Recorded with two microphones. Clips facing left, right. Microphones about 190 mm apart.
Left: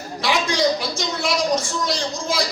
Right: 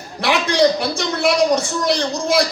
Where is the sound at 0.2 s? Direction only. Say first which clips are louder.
Right 5 dB; 60° right (ahead or behind).